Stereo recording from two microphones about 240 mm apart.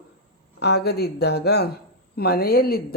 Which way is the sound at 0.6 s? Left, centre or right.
Left.